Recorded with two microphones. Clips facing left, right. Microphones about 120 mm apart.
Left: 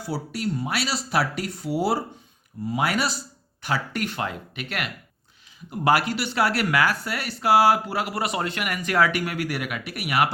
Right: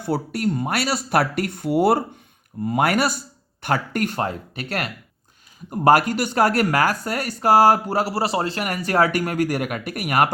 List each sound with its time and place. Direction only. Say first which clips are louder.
0.0 s speech: right 6 dB; 55° right (ahead or behind)